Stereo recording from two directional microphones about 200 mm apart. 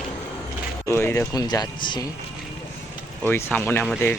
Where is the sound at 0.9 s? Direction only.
15° left (ahead or behind).